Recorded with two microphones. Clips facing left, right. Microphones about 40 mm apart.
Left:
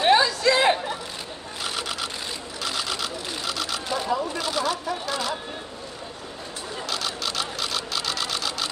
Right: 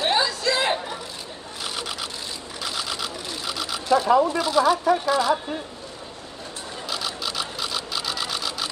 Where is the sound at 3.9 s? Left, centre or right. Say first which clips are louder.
Right 9 dB; right.